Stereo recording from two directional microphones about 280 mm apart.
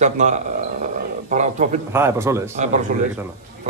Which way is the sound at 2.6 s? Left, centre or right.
Right.